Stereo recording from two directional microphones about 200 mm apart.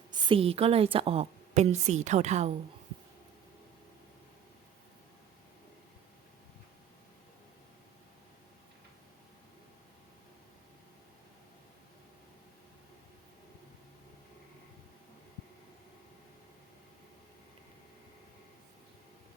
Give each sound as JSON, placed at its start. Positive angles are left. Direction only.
{"t": 0.1, "sound": "a woman's voice", "side_deg": -25}